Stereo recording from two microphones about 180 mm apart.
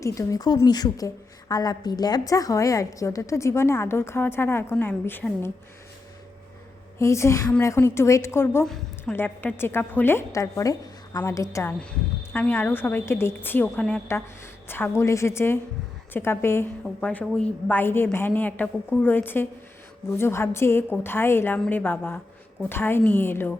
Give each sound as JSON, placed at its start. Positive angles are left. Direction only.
{"t": 0.0, "sound": "a woman's voice", "side_deg": 20}
{"t": 7.0, "sound": "a woman's voice", "side_deg": 15}
{"t": 8.6, "sound": "a woman's voice", "side_deg": 5}